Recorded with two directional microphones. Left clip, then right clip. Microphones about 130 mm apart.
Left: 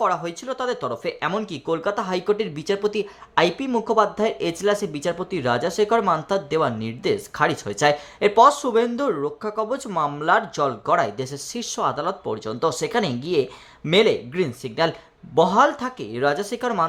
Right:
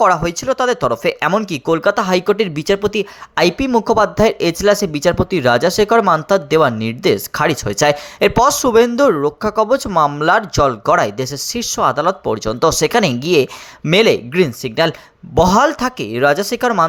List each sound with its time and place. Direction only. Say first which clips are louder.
0.0 s speech: right 9 dB; 45° right (ahead or behind)
1.3 s speech: right 9 dB; 35° right (ahead or behind)